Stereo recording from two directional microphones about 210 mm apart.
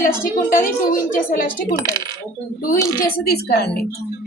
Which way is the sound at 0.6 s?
40° left (ahead or behind).